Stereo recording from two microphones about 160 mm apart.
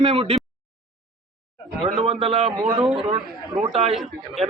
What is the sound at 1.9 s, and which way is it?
Speech, 40° right (ahead or behind).